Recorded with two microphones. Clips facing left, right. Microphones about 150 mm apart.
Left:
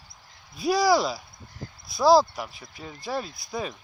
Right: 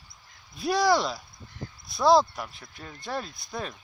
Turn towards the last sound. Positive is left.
turn(degrees=5)  # may be behind; listen again after turning